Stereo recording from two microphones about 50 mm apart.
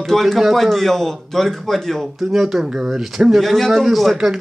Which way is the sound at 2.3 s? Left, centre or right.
Centre.